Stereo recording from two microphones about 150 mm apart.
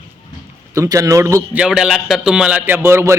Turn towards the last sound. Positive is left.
turn(degrees=-15)  # may be behind; listen again after turning